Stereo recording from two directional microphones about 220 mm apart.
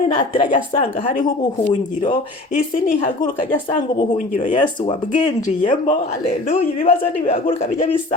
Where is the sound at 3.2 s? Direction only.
20° left (ahead or behind).